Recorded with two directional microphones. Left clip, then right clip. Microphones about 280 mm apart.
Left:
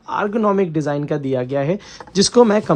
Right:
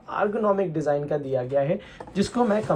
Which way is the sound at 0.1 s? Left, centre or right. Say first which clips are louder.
Left 5 dB; left.